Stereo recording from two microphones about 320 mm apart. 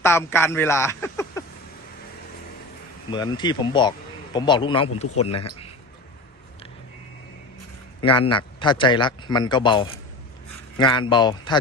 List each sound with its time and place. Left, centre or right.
0.0 s speech: centre
3.1 s speech: centre
8.0 s speech: centre